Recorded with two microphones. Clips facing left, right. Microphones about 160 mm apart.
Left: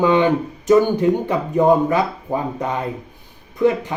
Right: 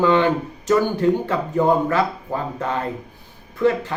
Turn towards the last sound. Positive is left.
turn(degrees=15)  # may be behind; listen again after turning